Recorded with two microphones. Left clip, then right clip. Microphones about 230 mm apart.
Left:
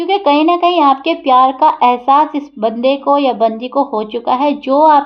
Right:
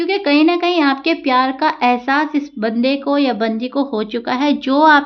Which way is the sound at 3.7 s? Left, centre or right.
Right.